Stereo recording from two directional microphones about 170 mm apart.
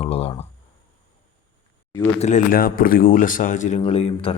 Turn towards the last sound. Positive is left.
turn(degrees=35)  # may be behind; listen again after turning